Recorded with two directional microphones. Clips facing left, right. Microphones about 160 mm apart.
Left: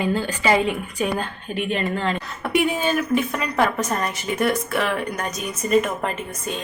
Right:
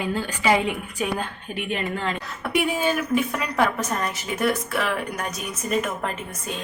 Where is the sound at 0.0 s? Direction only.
10° right (ahead or behind).